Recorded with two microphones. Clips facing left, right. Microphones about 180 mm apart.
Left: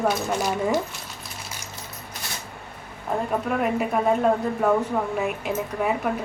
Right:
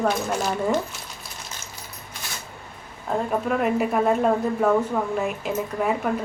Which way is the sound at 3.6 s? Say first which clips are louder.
Right 2 dB; centre (ahead or behind).